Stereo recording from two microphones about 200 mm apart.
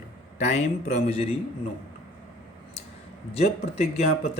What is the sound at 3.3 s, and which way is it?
Speech, 30° left (ahead or behind).